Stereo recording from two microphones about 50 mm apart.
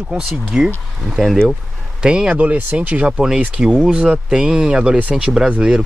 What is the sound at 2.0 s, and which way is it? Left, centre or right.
Speech, centre.